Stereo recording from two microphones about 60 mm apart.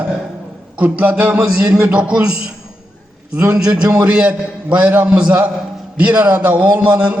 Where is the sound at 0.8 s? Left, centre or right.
Right.